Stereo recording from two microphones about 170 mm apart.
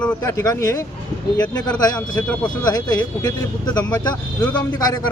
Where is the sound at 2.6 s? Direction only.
20° left (ahead or behind).